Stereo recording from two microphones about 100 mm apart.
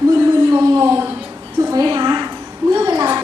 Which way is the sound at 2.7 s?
40° right (ahead or behind).